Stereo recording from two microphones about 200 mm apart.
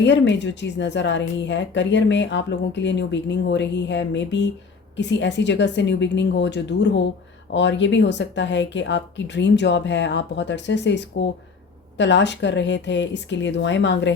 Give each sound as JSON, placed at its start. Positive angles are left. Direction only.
{"t": 0.0, "sound": "speech", "side_deg": 60}